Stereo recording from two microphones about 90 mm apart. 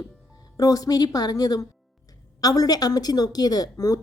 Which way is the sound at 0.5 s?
40° left (ahead or behind).